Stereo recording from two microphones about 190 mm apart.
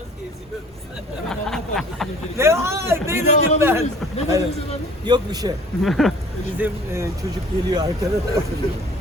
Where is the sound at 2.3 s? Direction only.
15° right (ahead or behind).